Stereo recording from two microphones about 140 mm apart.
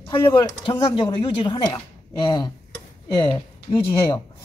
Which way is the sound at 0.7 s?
35° left (ahead or behind).